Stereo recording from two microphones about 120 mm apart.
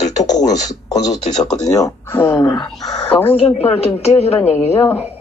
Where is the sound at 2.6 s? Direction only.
Centre (ahead or behind).